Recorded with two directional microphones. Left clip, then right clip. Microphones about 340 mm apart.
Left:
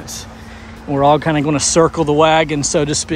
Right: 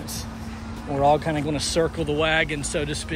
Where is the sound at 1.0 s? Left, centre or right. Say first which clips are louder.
Left 7 dB; left.